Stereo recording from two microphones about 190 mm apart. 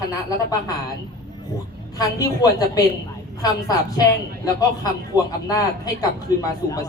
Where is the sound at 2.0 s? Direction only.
20° left (ahead or behind).